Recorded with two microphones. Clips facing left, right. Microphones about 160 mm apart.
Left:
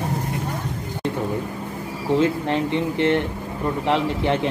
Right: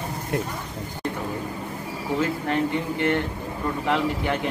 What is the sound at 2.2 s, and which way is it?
Speech, 25° left (ahead or behind).